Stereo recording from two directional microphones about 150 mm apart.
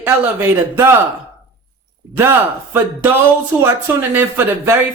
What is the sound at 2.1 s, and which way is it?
Speech, 15° right (ahead or behind).